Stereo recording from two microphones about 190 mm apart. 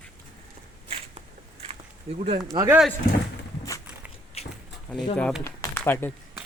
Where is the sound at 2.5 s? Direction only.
15° right (ahead or behind).